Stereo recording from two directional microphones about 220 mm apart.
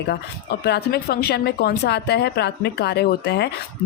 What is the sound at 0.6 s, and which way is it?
A woman's voice, 45° left (ahead or behind).